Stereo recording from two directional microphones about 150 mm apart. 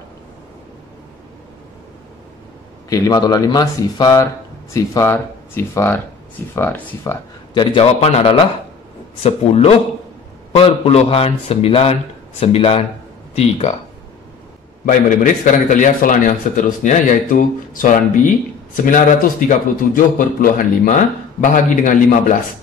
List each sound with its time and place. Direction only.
2.9 s speech: 25° left (ahead or behind)
7.5 s speech: 40° left (ahead or behind)
14.9 s a man's voice: 60° left (ahead or behind)